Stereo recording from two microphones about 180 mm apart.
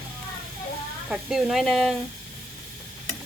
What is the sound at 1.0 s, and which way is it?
Speech, centre (ahead or behind).